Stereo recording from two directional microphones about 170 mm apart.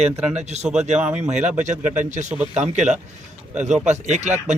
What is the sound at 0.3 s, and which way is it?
Speech, 40° right (ahead or behind).